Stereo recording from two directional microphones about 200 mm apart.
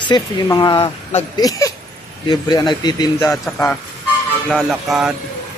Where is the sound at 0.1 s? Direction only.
20° left (ahead or behind).